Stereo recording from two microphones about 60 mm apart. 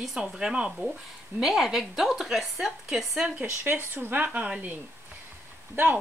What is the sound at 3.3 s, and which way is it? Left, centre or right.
Speech, right.